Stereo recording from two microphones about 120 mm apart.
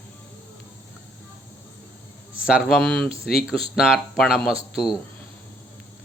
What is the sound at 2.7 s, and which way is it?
Speech, 10° left (ahead or behind).